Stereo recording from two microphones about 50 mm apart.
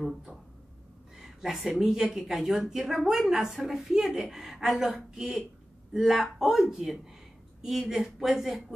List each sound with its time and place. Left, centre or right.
1.2 s a woman's voice: centre